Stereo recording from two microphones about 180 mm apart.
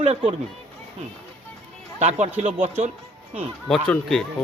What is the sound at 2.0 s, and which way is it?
Speech, 40° right (ahead or behind).